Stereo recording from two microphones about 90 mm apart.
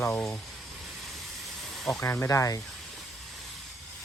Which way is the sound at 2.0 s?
30° left (ahead or behind).